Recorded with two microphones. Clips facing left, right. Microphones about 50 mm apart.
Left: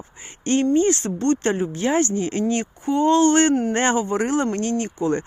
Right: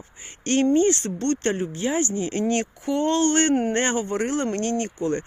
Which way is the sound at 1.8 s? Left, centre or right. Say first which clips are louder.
Left 6 dB; left.